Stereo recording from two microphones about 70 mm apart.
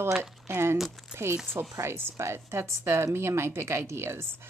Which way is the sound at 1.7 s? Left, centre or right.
Right.